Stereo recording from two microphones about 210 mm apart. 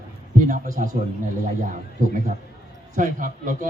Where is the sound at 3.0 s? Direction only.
40° right (ahead or behind).